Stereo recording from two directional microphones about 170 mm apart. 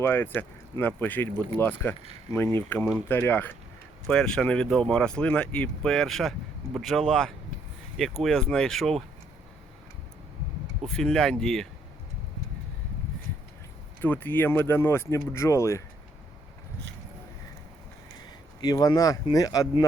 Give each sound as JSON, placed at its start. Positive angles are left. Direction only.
{"t": 0.0, "sound": "speech", "side_deg": 10}
{"t": 10.8, "sound": "speech", "side_deg": 5}
{"t": 14.0, "sound": "speech", "side_deg": 10}
{"t": 18.6, "sound": "speech", "side_deg": 25}